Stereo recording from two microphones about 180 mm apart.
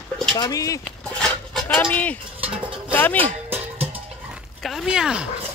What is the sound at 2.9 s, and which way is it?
Speech, 10° left (ahead or behind).